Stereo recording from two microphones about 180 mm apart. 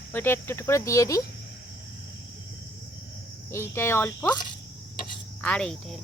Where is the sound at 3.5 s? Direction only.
15° left (ahead or behind).